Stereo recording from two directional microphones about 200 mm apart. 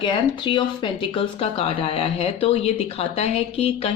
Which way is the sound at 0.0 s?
25° left (ahead or behind).